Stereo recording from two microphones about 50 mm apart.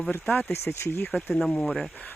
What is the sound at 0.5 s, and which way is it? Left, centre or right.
Speech, left.